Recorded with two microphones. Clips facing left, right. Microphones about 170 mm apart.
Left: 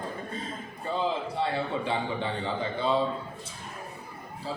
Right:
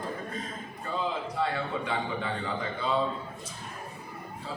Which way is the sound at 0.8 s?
30° left (ahead or behind).